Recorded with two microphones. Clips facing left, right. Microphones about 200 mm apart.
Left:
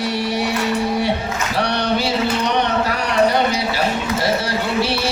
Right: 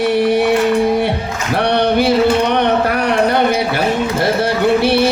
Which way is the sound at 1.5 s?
55° right (ahead or behind).